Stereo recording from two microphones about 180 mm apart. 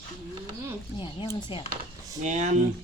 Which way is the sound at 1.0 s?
30° left (ahead or behind).